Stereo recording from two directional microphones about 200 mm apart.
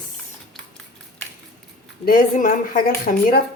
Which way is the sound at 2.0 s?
45° left (ahead or behind).